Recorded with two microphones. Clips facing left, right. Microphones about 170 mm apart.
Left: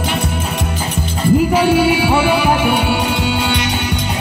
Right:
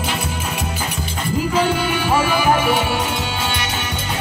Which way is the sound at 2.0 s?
70° left (ahead or behind).